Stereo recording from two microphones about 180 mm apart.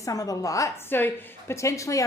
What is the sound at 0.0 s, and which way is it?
A woman's voice, 20° left (ahead or behind).